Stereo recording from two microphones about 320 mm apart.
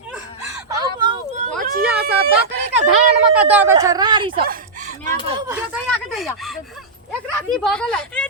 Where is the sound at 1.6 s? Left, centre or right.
Right.